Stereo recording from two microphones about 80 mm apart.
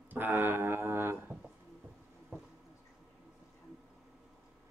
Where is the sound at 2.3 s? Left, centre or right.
Right.